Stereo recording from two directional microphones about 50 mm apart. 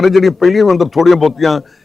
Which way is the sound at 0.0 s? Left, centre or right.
Centre.